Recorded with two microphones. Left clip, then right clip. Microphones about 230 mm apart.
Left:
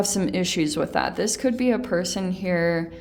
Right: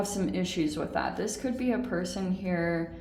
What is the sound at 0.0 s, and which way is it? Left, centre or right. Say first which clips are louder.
Speech: left 7 dB; left.